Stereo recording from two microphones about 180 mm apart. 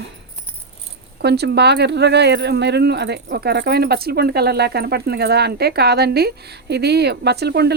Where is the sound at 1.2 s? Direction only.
65° right (ahead or behind).